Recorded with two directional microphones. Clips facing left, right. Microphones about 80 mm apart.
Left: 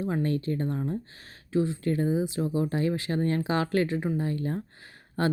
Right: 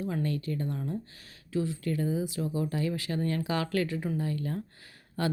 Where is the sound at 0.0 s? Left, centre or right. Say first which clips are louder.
Left 4 dB; left.